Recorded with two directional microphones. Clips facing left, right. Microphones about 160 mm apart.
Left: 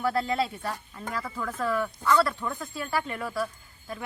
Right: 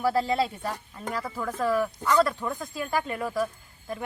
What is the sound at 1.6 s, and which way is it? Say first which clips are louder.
Speech: right 2 dB; 10° right (ahead or behind).